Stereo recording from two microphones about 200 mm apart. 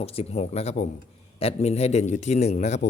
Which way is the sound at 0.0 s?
30° left (ahead or behind).